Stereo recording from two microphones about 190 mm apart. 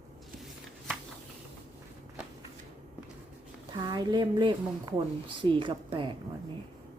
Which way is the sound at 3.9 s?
25° right (ahead or behind).